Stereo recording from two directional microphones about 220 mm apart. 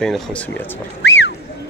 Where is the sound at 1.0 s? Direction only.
55° left (ahead or behind).